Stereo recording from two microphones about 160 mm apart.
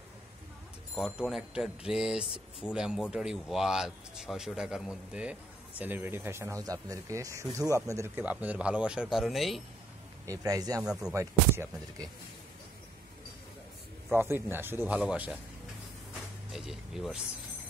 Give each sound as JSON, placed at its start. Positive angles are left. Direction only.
{"t": 0.9, "sound": "a man's voice", "side_deg": -5}
{"t": 10.2, "sound": "speech", "side_deg": -20}
{"t": 10.8, "sound": "speech", "side_deg": -5}
{"t": 11.1, "sound": "a man's voice", "side_deg": -15}
{"t": 14.1, "sound": "a man's voice", "side_deg": -15}
{"t": 16.5, "sound": "speech", "side_deg": 0}